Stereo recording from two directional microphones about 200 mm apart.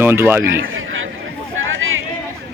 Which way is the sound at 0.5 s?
80° right.